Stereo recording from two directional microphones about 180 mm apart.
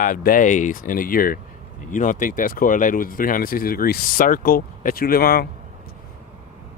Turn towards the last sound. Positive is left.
turn(degrees=55)  # may be behind; listen again after turning